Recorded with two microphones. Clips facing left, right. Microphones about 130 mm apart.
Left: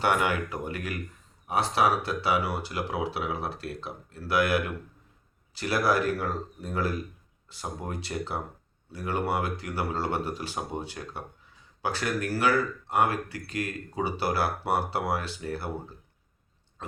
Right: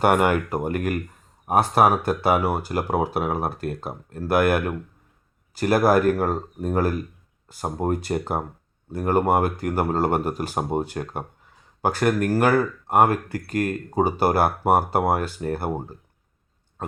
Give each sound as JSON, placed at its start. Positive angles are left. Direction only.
{"t": 0.0, "sound": "speech", "side_deg": -50}